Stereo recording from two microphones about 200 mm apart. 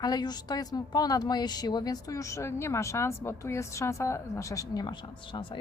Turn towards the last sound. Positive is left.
turn(degrees=20)  # may be behind; listen again after turning